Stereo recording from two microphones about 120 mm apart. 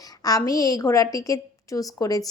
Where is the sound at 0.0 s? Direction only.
30° left (ahead or behind).